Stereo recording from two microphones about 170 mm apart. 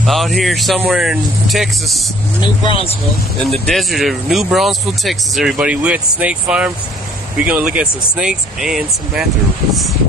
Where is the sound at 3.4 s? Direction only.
Centre (ahead or behind).